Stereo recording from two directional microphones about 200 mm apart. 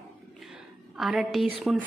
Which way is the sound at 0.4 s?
Centre (ahead or behind).